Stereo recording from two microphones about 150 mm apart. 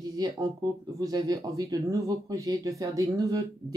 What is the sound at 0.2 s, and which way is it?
Speech, 25° right (ahead or behind).